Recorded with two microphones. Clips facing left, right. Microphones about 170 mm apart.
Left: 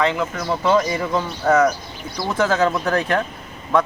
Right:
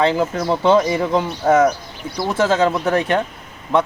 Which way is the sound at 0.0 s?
30° right (ahead or behind).